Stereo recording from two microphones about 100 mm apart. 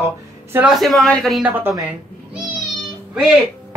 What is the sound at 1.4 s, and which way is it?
Speech, 20° right (ahead or behind).